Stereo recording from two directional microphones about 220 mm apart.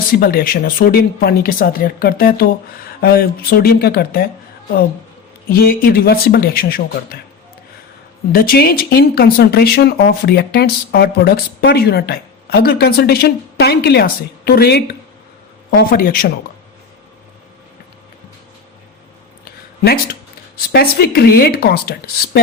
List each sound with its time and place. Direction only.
0.2 s speech: 45° left (ahead or behind)
5.5 s speech: 40° left (ahead or behind)
8.3 s speech: 40° left (ahead or behind)
20.6 s speech: 45° left (ahead or behind)